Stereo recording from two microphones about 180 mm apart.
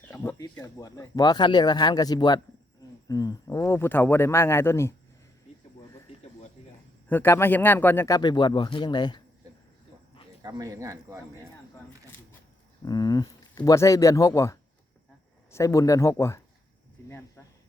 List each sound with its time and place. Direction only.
0.1 s speech: 15° left (ahead or behind)
7.1 s speech: 10° left (ahead or behind)
10.4 s speech: 20° right (ahead or behind)
12.8 s speech: 20° left (ahead or behind)